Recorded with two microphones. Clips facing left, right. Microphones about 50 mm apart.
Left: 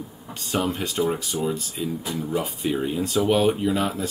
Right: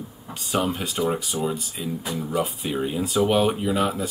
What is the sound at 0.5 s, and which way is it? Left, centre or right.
Speech, centre.